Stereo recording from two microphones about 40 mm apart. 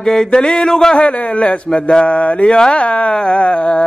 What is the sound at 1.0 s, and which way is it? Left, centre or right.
Speech, left.